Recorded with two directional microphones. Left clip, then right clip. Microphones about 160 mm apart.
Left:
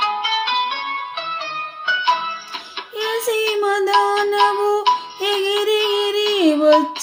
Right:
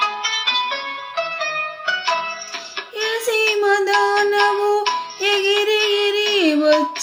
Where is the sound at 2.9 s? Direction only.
40° left (ahead or behind).